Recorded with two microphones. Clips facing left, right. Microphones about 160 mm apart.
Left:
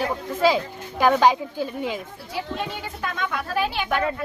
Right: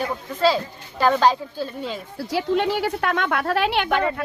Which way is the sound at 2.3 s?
75° right (ahead or behind).